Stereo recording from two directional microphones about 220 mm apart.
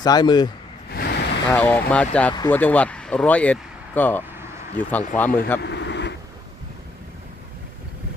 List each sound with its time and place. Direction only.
0.0 s speech: 20° left (ahead or behind)
0.9 s vehicle: 50° left (ahead or behind)
1.5 s speech: 10° left (ahead or behind)
5.6 s vehicle: 50° left (ahead or behind)